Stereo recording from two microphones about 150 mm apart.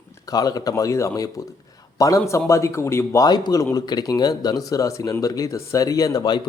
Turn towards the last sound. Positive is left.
turn(degrees=25)  # may be behind; listen again after turning